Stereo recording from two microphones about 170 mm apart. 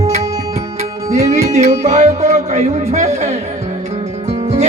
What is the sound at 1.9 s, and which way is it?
Speech, 45° right (ahead or behind).